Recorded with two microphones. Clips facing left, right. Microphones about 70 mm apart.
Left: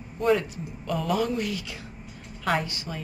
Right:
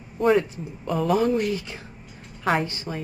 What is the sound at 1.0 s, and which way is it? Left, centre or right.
Speech, right.